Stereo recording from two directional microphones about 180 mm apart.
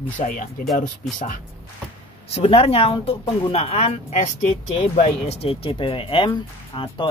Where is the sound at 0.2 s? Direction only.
35° left (ahead or behind).